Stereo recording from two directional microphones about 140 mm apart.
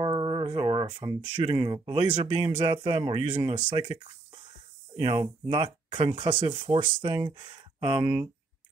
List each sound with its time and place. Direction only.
0.0 s speech: 35° right (ahead or behind)